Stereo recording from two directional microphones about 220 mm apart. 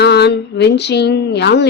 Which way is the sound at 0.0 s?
50° left (ahead or behind).